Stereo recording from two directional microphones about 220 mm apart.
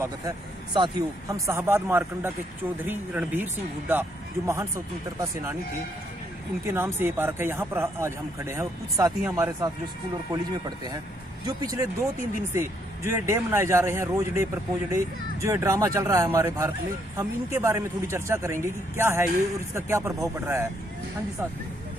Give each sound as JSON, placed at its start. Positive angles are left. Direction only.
{"t": 0.7, "sound": "speech", "side_deg": -20}
{"t": 6.6, "sound": "speech", "side_deg": -10}
{"t": 11.4, "sound": "speech", "side_deg": -15}